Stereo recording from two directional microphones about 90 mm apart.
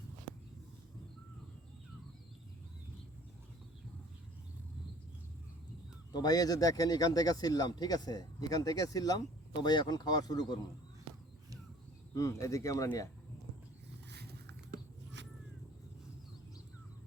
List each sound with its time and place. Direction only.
6.1 s speech: 45° left (ahead or behind)
12.1 s speech: 35° left (ahead or behind)